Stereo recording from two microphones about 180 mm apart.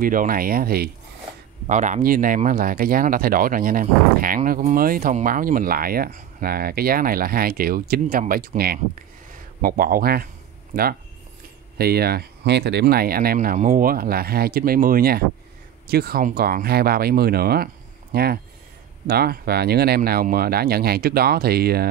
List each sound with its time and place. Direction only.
0.0 s speech: 50° right (ahead or behind)
1.7 s speech: 40° right (ahead or behind); by 21.8 s 60° right (ahead or behind)